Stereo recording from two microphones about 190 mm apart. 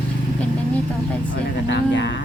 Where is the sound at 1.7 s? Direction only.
65° left (ahead or behind).